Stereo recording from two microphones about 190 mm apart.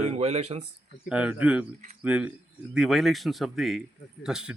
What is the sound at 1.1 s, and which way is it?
A man's voice, 5° right (ahead or behind).